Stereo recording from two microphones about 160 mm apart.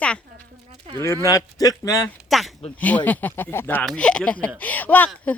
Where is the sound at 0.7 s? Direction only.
35° right (ahead or behind).